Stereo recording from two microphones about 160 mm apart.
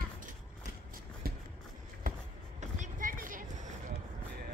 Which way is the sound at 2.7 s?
60° right (ahead or behind).